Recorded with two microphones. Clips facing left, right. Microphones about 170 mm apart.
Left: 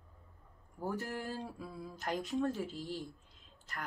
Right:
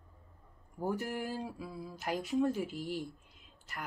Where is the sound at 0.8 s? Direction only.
15° right (ahead or behind).